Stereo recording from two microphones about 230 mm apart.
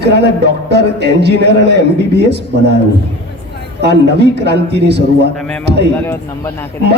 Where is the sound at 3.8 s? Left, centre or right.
Right.